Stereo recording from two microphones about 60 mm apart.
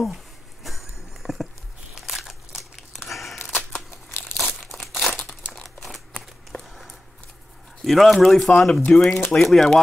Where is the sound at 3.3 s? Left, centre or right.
Left.